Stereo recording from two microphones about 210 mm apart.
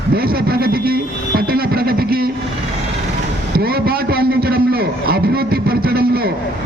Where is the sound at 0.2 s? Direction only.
45° right (ahead or behind).